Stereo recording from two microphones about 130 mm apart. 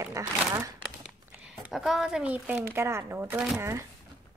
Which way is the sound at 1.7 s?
Centre (ahead or behind).